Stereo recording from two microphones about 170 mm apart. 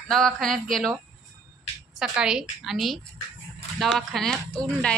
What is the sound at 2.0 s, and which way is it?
A woman's voice, 5° right (ahead or behind).